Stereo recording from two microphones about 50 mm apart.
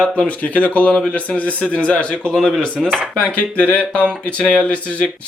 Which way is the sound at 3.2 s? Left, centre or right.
Left.